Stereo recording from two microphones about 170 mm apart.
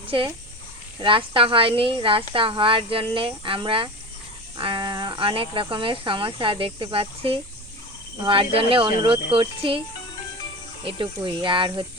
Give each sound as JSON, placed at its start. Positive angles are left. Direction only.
{"t": 0.1, "sound": "a woman's voice", "side_deg": -30}
{"t": 10.8, "sound": "speech", "side_deg": -30}